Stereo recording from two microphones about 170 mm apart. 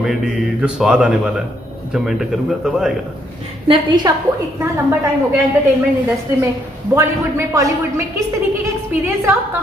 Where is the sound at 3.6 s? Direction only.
25° right (ahead or behind).